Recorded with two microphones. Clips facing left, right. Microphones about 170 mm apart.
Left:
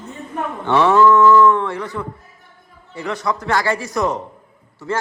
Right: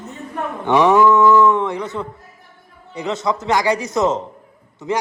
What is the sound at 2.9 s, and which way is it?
A man's voice, 20° right (ahead or behind).